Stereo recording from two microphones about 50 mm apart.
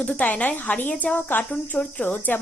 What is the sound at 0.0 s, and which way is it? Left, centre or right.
Speech, left.